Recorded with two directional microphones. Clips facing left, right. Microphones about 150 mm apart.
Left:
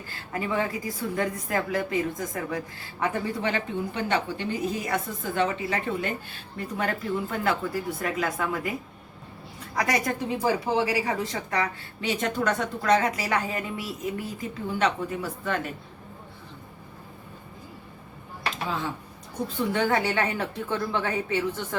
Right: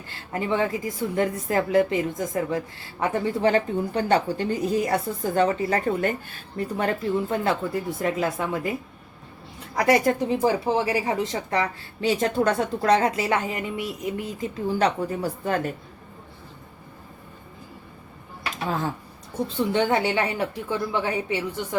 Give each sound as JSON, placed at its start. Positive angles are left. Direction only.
{"t": 0.3, "sound": "a woman's voice", "side_deg": -25}
{"t": 9.7, "sound": "a woman's voice", "side_deg": -25}
{"t": 14.7, "sound": "speech", "side_deg": -35}
{"t": 18.5, "sound": "a sound", "side_deg": -50}
{"t": 19.5, "sound": "a woman's voice", "side_deg": -25}